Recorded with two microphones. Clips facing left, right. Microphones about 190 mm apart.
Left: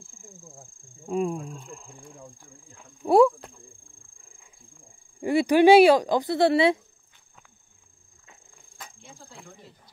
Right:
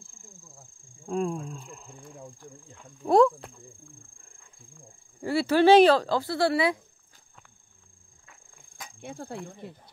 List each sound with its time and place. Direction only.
1.0 s speech: 5° left (ahead or behind)
3.1 s a sound: 5° left (ahead or behind)
5.2 s speech: 15° left (ahead or behind)
9.0 s snake: 60° right (ahead or behind)
9.6 s speech: 60° right (ahead or behind)